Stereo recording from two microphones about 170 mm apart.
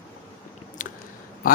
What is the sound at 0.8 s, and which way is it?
Biting, 50° left (ahead or behind).